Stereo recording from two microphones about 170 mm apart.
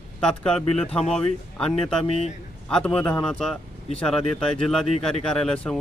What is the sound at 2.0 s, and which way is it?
Speech, 35° left (ahead or behind).